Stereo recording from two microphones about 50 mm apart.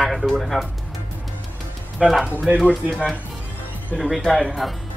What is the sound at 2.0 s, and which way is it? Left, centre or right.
Speech, centre.